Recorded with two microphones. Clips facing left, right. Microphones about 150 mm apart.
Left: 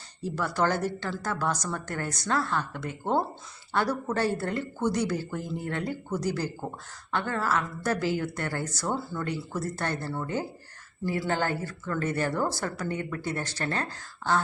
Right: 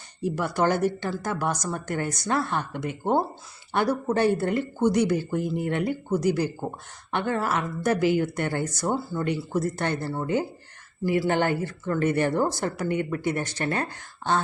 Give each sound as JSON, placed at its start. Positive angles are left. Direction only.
{"t": 0.2, "sound": "speech", "side_deg": -15}